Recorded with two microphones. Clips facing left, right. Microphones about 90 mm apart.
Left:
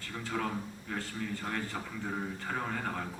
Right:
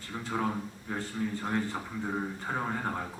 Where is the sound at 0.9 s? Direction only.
20° right (ahead or behind).